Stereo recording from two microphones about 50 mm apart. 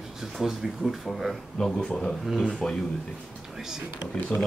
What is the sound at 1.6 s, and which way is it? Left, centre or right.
Speech, centre.